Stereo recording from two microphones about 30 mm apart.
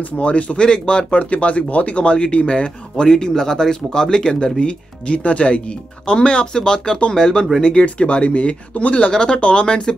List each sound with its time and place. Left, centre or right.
0.0 s speech: left
1.2 s speech: left
4.6 s speech: left
8.0 s speech: left
9.1 s speech: left
9.4 s speech: left